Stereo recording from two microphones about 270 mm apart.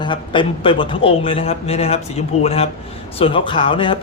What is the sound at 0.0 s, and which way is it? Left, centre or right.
Speech, centre.